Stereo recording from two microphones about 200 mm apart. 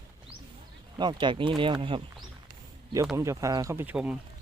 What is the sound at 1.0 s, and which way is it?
Speech, 25° right (ahead or behind).